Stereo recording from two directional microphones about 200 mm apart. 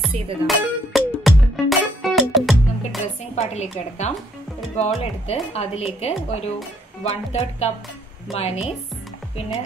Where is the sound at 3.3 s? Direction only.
35° left (ahead or behind).